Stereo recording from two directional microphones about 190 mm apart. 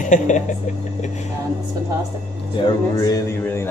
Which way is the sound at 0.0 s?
40° left (ahead or behind).